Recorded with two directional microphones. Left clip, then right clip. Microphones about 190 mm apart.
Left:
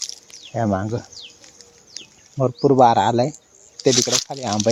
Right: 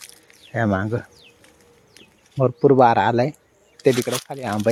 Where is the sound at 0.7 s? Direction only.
15° right (ahead or behind).